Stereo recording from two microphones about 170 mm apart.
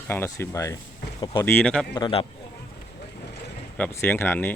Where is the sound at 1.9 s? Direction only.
25° left (ahead or behind).